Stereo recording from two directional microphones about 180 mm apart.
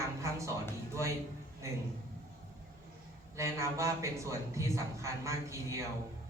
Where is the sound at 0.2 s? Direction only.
15° right (ahead or behind).